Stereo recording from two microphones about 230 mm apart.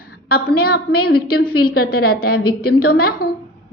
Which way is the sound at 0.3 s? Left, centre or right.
Left.